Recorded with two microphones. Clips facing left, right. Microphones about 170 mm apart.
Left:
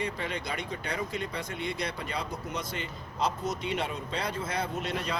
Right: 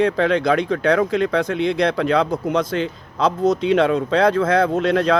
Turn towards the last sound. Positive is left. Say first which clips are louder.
# right 15 dB
turn(degrees=-90)